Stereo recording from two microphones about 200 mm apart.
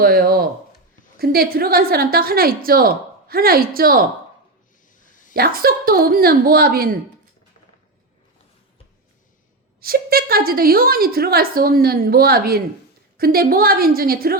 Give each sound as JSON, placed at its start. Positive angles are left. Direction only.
{"t": 0.0, "sound": "a woman's voice", "side_deg": -50}
{"t": 4.9, "sound": "a sound", "side_deg": 40}
{"t": 5.3, "sound": "a woman's voice", "side_deg": -45}
{"t": 9.8, "sound": "a woman's voice", "side_deg": -50}